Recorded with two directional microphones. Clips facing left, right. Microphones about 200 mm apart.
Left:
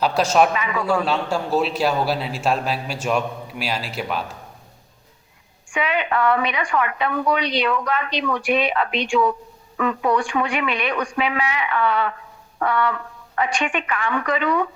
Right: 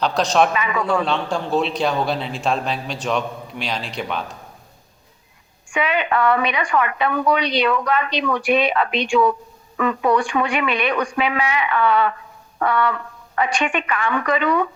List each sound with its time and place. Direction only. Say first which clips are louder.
0.0 s a man's voice: even; 10° left (ahead or behind)
5.7 s a woman's voice: right 2 dB; 65° right (ahead or behind)
12.5 s music: right 1 dB; 70° right (ahead or behind)
13.3 s a woman's voice: right 2 dB; 70° right (ahead or behind)